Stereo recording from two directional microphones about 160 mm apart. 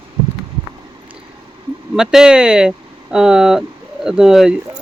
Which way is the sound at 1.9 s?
5° right (ahead or behind).